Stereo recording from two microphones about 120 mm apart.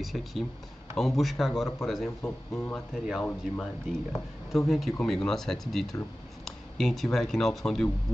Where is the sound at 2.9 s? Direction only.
Centre (ahead or behind).